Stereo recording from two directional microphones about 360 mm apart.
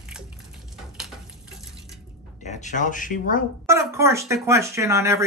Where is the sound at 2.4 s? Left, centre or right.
Centre.